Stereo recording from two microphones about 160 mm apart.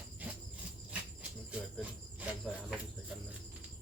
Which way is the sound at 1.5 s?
10° right (ahead or behind).